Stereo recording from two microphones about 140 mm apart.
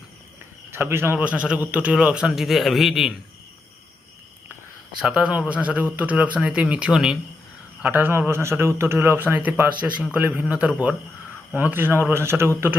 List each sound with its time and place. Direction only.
0.7 s a man's voice: 15° right (ahead or behind); by 3.2 s centre (ahead or behind)
5.0 s a man's voice: 5° right (ahead or behind)